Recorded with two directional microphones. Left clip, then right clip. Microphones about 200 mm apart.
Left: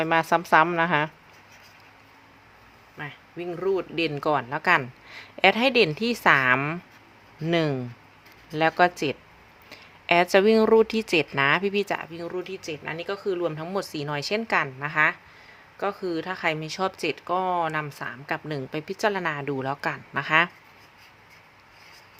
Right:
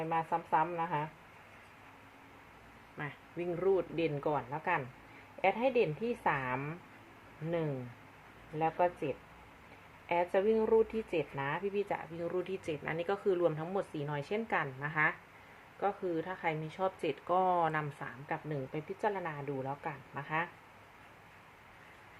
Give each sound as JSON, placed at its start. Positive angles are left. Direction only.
{"t": 0.0, "sound": "a woman's voice", "side_deg": 60}
{"t": 3.0, "sound": "speech", "side_deg": 15}
{"t": 3.9, "sound": "speech", "side_deg": 40}
{"t": 8.5, "sound": "speech", "side_deg": 50}
{"t": 12.2, "sound": "speech", "side_deg": 15}
{"t": 13.7, "sound": "speech", "side_deg": 35}
{"t": 18.0, "sound": "speech", "side_deg": 35}